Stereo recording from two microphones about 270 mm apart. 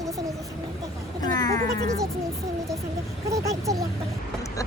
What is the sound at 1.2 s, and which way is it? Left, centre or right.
Speech, centre.